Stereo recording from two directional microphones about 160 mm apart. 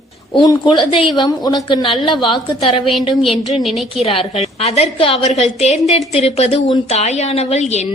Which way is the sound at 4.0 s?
40° left (ahead or behind).